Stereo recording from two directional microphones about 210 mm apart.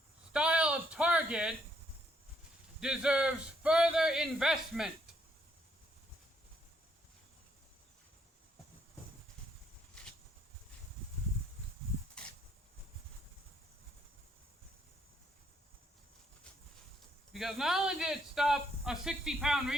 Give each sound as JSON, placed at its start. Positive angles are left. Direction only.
{"t": 0.3, "sound": "speech", "side_deg": -5}
{"t": 2.8, "sound": "speech", "side_deg": -5}
{"t": 17.3, "sound": "speech", "side_deg": 0}